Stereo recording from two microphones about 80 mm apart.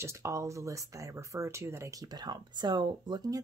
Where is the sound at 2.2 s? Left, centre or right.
Right.